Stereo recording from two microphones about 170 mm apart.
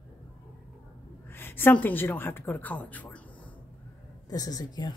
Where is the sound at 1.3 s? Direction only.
10° left (ahead or behind).